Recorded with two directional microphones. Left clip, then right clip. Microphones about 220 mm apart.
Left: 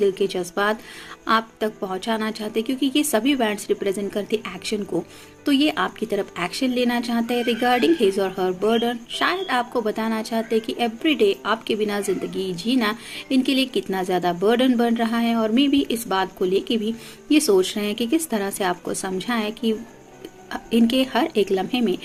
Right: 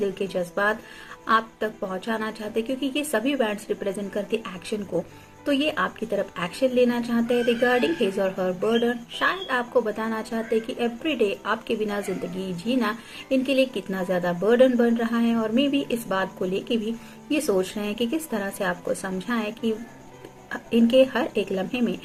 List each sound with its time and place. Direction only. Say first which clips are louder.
0.0 s a woman's voice: left 5 dB; 45° left (ahead or behind)